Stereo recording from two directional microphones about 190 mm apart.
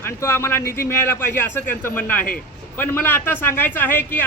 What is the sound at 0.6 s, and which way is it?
Speech, 50° left (ahead or behind).